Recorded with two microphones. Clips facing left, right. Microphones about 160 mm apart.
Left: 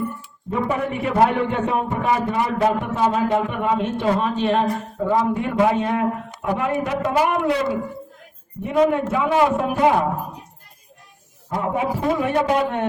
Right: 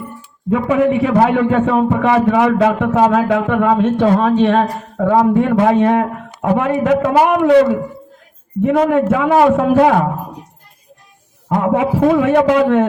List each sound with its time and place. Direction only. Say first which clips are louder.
0.7 s a man's voice: right 12 dB; 90° right
8.6 s a man's voice: right 5 dB; 90° right
11.4 s a man's voice: right 7 dB; 85° right